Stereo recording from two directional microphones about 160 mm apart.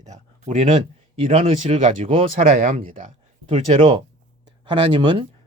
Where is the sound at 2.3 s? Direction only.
55° right (ahead or behind).